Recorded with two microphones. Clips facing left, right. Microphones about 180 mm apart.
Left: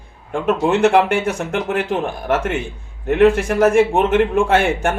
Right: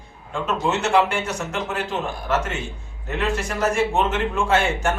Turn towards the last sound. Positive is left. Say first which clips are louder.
# left 5 dB
turn(degrees=55)  # may be behind; listen again after turning